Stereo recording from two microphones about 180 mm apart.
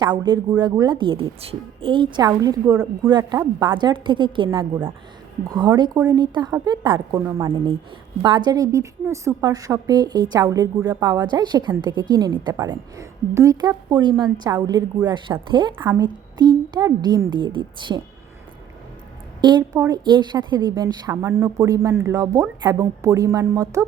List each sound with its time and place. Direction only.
0.0 s a woman's voice: 25° right (ahead or behind)
19.4 s a woman's voice: 25° right (ahead or behind)